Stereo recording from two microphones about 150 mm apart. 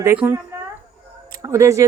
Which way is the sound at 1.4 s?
20° right (ahead or behind).